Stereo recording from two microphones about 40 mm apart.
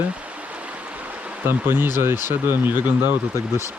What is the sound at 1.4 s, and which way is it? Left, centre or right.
Speech, right.